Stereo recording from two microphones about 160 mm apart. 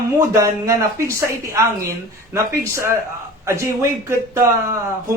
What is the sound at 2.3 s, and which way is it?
Speech, 15° right (ahead or behind).